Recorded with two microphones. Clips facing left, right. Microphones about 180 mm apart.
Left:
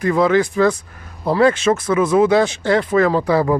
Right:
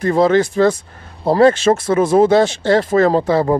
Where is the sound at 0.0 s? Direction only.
30° right (ahead or behind).